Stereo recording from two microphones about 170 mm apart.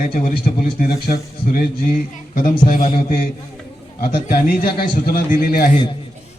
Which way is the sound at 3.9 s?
55° left (ahead or behind).